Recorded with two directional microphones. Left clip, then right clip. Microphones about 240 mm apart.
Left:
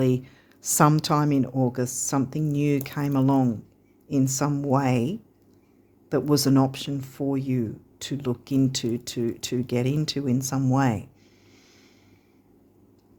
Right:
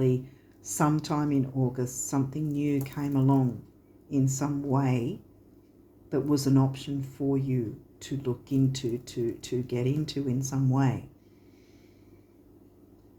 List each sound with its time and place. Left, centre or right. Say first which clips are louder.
0.0 s speech: left 3 dB; left